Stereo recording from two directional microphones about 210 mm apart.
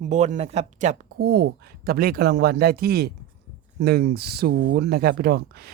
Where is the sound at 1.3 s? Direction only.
50° right (ahead or behind).